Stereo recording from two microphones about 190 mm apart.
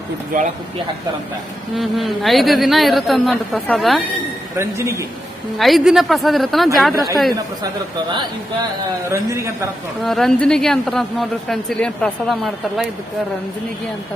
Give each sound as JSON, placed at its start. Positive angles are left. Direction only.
{"t": 0.3, "sound": "speech", "side_deg": -50}
{"t": 1.7, "sound": "speech", "side_deg": 0}
{"t": 4.5, "sound": "speech", "side_deg": -15}
{"t": 5.5, "sound": "speech", "side_deg": 0}
{"t": 6.9, "sound": "speech", "side_deg": -20}
{"t": 9.0, "sound": "speech", "side_deg": -15}
{"t": 10.0, "sound": "speech", "side_deg": 0}